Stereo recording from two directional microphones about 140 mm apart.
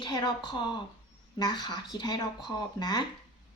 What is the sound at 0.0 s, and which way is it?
A woman's voice, 35° left (ahead or behind).